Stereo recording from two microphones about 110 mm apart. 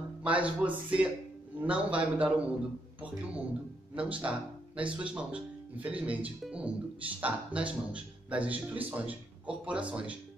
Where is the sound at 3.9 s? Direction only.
10° right (ahead or behind).